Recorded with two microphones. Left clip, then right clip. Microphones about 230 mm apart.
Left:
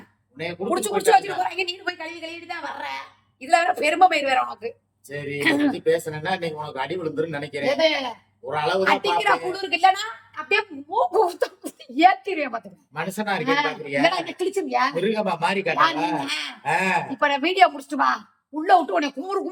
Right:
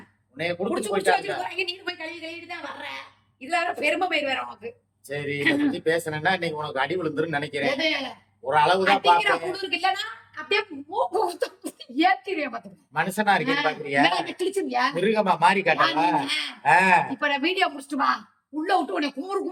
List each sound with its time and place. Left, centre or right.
0.3 s speech: centre
1.4 s a woman's voice: centre
5.0 s speech: centre
5.4 s a woman's voice: left
5.7 s speech: centre
7.7 s a woman's voice: left
8.4 s speech: centre
8.8 s a woman's voice: centre
12.9 s speech: centre
13.4 s a woman's voice: left
13.7 s speech: centre
14.0 s a woman's voice: centre
15.0 s speech: centre
17.2 s a woman's voice: centre